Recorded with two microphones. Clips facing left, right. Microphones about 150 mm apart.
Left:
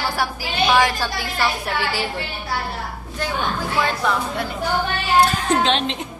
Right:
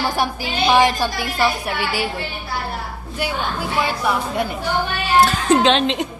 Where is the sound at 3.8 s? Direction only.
10° right (ahead or behind).